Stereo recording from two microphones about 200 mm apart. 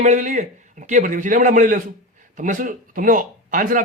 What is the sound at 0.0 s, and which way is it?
Speech, 40° right (ahead or behind).